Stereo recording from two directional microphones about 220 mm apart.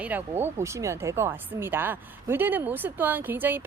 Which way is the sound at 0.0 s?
10° right (ahead or behind).